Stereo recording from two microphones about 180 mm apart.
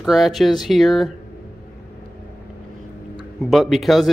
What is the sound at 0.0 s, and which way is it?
Speech, centre (ahead or behind).